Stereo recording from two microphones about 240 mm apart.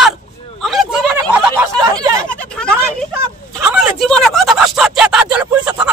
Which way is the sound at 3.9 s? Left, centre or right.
Centre.